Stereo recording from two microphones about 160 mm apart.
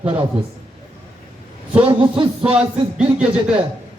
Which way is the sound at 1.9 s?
30° right (ahead or behind).